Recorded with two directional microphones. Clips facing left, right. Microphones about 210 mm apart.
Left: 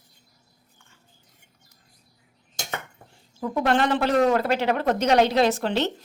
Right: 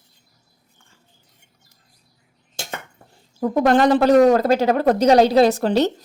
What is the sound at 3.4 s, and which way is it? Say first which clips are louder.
A woman's voice: right 7 dB; 40° right (ahead or behind).